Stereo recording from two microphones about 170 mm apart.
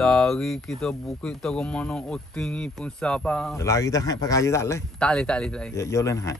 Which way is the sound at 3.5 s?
20° left (ahead or behind).